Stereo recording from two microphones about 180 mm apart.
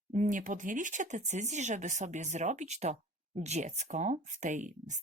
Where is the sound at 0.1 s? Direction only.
45° right (ahead or behind).